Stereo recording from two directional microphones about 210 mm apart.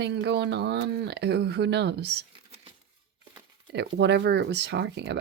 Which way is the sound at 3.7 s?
55° right (ahead or behind).